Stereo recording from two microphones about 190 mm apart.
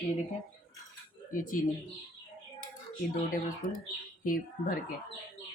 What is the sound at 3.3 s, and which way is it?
Speech, 45° left (ahead or behind).